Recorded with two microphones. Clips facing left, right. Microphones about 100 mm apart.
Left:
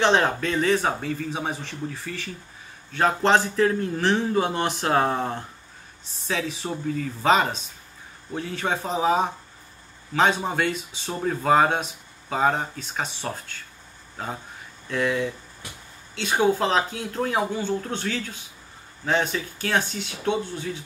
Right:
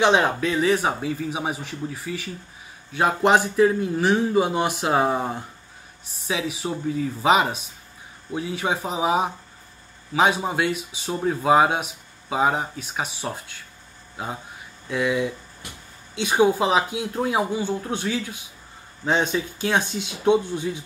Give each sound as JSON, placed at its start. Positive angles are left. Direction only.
{"t": 0.0, "sound": "speech", "side_deg": -10}